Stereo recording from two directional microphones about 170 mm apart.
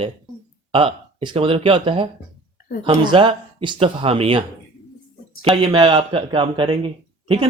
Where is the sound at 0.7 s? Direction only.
30° right (ahead or behind).